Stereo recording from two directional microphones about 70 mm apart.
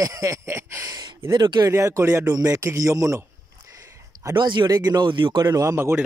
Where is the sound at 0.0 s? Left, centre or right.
Right.